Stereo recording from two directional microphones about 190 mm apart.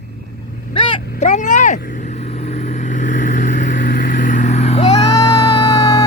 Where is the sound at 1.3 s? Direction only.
40° left (ahead or behind).